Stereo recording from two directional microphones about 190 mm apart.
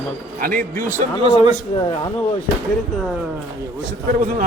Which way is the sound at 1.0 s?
30° right (ahead or behind).